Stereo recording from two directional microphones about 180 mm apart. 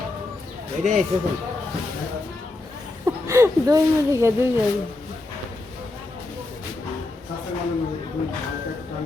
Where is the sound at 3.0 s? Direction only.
15° right (ahead or behind).